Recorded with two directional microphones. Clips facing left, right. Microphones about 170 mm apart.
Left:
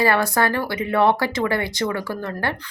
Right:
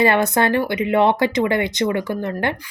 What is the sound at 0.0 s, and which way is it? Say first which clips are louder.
Speech: right 3 dB; 20° right (ahead or behind).